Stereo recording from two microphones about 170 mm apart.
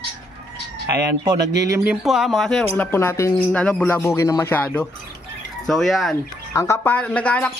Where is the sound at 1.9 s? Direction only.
Centre (ahead or behind).